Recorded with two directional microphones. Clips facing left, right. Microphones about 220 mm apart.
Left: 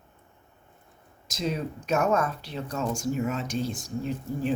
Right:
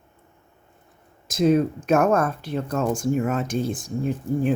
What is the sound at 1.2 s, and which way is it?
Speech, 50° right (ahead or behind).